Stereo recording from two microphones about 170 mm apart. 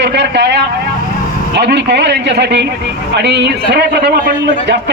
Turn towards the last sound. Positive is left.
turn(degrees=-85)